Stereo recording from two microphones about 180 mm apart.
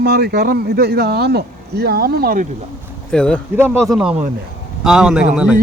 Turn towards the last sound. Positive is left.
turn(degrees=-5)  # may be behind; listen again after turning